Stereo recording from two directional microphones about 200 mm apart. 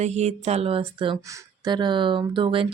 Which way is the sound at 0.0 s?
35° right (ahead or behind).